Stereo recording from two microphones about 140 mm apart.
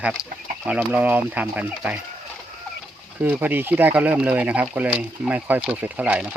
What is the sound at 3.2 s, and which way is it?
Speech, 10° right (ahead or behind).